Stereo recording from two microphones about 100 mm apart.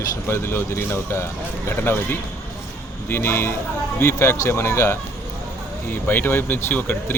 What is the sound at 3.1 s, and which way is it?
Speech, 25° left (ahead or behind).